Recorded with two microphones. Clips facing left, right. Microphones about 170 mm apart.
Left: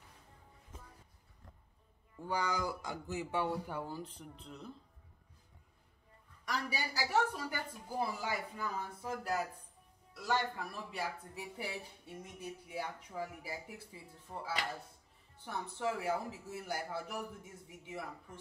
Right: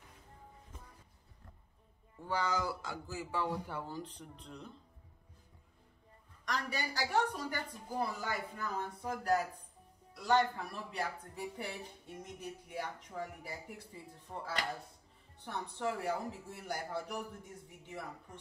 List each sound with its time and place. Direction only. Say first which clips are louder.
2.2 s speech: right 1 dB; 15° left (ahead or behind)
3.6 s speech: left 1 dB; 10° left (ahead or behind)
6.4 s a woman's voice: right 1 dB; 5° left (ahead or behind)